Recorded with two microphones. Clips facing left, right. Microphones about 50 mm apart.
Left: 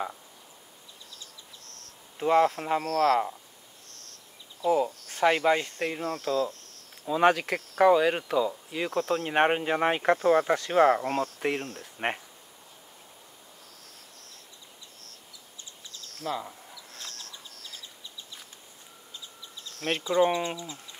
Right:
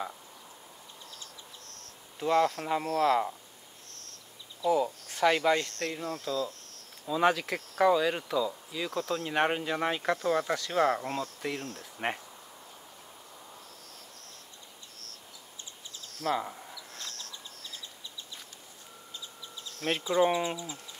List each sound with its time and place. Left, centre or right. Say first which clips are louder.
2.1 s speech: left 4 dB; centre
2.8 s speech: left 2 dB; centre
4.6 s speech: left 2 dB; centre
4.8 s speech: left 1 dB; centre
5.2 s speech: left 2 dB; centre
11.7 s speech: left 2 dB; centre
16.3 s speech: right 3 dB; centre
17.0 s bird: left 1 dB; centre
19.1 s bird: even; centre
20.1 s speech: left 2 dB; centre